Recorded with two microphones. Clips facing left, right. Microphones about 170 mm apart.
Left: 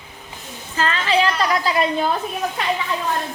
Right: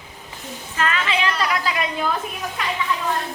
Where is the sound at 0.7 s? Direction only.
30° left (ahead or behind).